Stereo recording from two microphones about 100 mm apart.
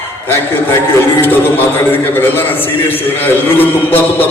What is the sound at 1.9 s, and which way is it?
A man's voice, 20° left (ahead or behind).